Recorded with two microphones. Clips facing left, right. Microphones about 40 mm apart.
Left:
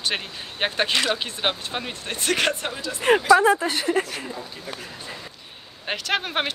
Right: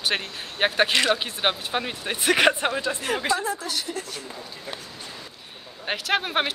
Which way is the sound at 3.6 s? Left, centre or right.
Left.